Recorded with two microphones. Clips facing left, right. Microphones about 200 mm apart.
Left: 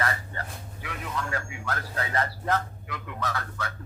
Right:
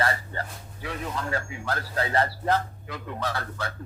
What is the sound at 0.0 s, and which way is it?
A man's voice, 30° right (ahead or behind).